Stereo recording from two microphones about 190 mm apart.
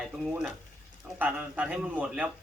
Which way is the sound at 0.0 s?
5° right (ahead or behind).